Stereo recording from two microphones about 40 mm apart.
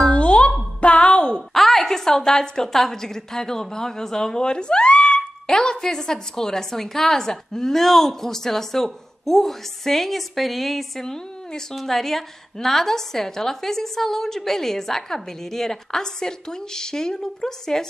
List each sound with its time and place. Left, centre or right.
0.0 s music: left
1.5 s a woman's voice: centre